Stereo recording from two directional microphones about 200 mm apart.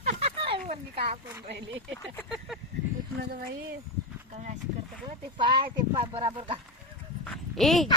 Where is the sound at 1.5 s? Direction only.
55° right (ahead or behind).